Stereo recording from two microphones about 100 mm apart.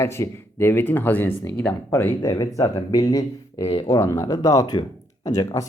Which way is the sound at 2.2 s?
35° left (ahead or behind).